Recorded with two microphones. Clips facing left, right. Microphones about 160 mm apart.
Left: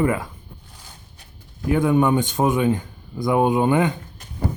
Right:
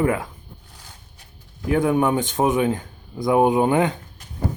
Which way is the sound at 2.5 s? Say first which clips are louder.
Left 1 dB; 25° right (ahead or behind).